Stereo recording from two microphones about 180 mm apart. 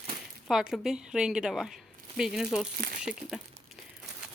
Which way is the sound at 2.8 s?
50° right (ahead or behind).